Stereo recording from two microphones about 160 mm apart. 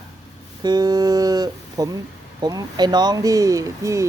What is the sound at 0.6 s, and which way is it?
Speech, 25° right (ahead or behind).